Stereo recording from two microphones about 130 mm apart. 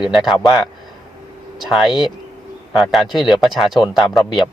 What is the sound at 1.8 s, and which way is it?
Speech, 35° left (ahead or behind).